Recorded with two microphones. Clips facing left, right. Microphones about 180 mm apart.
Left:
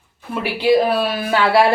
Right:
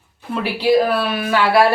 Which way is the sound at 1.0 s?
30° left (ahead or behind).